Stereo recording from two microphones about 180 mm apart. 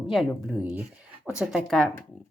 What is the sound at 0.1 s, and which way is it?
Speech, centre (ahead or behind).